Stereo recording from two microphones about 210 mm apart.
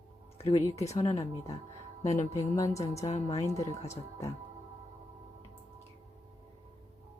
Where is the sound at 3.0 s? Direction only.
30° left (ahead or behind).